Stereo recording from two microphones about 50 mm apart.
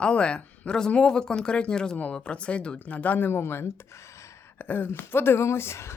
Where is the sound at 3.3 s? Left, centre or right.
Left.